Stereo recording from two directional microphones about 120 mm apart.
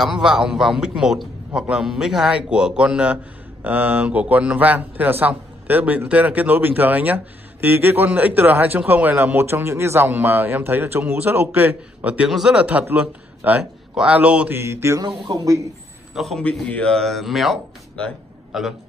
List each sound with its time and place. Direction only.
0.0 s a man's voice: 5° right (ahead or behind)
14.6 s mantra: 20° right (ahead or behind)
15.0 s speech: 35° right (ahead or behind)
16.2 s a man's voice: 5° left (ahead or behind)